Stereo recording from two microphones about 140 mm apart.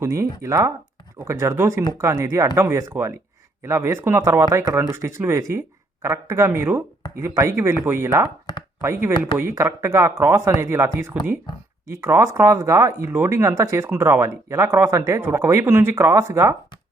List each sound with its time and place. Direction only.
0.0 s speech: 20° right (ahead or behind)